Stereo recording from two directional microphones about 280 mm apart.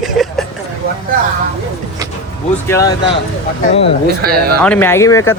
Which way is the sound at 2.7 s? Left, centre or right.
Centre.